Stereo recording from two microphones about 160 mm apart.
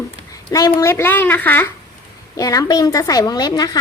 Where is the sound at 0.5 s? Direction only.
20° left (ahead or behind).